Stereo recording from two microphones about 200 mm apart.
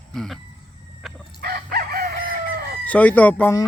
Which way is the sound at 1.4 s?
50° right (ahead or behind).